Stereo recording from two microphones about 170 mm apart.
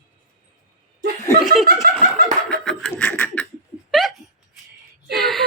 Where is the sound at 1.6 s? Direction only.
65° right (ahead or behind).